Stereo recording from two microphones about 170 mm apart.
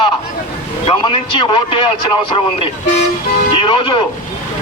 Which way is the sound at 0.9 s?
30° left (ahead or behind).